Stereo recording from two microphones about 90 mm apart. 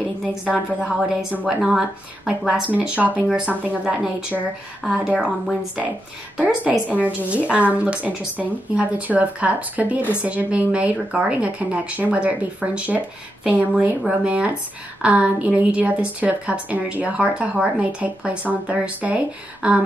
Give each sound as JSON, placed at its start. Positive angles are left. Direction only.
{"t": 0.3, "sound": "a woman's voice", "side_deg": -10}